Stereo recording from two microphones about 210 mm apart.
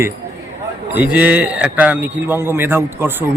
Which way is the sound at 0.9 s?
5° right (ahead or behind).